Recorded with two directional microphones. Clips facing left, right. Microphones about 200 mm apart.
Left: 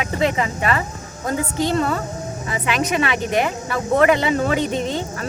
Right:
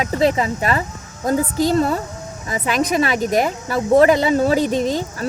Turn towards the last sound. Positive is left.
turn(degrees=-40)  # may be behind; listen again after turning